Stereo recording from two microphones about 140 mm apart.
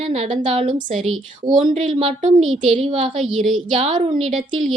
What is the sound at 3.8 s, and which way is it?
Speech, 45° right (ahead or behind).